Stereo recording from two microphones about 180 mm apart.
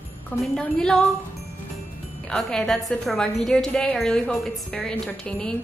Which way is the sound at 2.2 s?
5° left (ahead or behind).